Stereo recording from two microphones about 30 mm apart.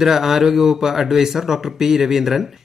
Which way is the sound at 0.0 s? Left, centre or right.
Centre.